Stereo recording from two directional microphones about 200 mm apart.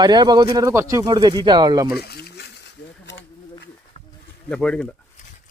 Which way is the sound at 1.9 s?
50° left (ahead or behind).